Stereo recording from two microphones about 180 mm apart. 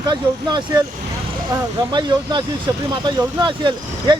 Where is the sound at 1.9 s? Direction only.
25° right (ahead or behind).